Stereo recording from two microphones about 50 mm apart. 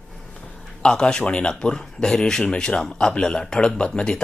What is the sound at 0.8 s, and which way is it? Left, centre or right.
Speech, centre.